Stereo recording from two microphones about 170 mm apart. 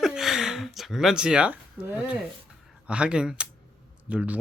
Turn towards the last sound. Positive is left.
turn(degrees=-10)  # may be behind; listen again after turning